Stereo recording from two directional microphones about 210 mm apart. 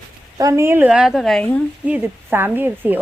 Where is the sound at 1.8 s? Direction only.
5° right (ahead or behind).